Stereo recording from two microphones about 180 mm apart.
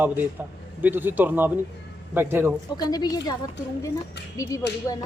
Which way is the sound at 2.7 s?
20° left (ahead or behind).